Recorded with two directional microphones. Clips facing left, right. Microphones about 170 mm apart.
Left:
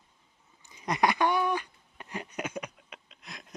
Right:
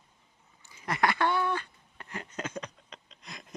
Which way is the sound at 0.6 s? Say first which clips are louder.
Left 2 dB; 20° left (ahead or behind).